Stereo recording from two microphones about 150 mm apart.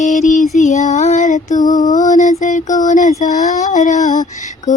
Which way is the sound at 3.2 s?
55° left (ahead or behind).